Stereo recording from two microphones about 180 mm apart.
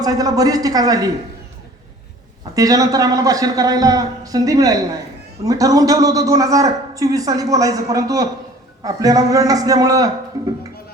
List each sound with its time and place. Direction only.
0.0 s a man's voice: 20° right (ahead or behind)
2.6 s a man's voice: 20° right (ahead or behind)
10.3 s music: 15° right (ahead or behind)